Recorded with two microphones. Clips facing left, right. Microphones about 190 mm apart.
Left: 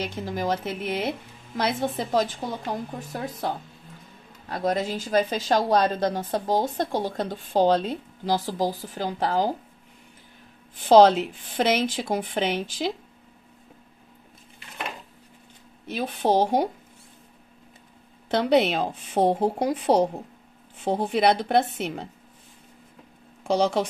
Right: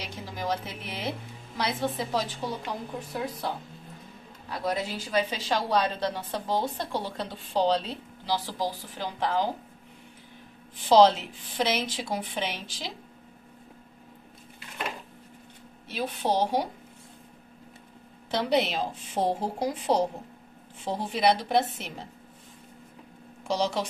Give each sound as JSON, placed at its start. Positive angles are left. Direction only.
{"t": 0.0, "sound": "a woman's voice", "side_deg": 50}
{"t": 4.5, "sound": "a woman's voice", "side_deg": 50}
{"t": 10.9, "sound": "a woman's voice", "side_deg": 50}
{"t": 15.9, "sound": "a woman's voice", "side_deg": 50}
{"t": 18.3, "sound": "a woman's voice", "side_deg": 55}
{"t": 23.4, "sound": "a woman's voice", "side_deg": 55}